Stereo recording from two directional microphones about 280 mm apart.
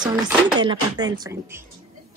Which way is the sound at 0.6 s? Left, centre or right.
Centre.